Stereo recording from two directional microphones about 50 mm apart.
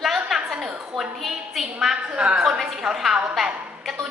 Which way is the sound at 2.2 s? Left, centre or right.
Right.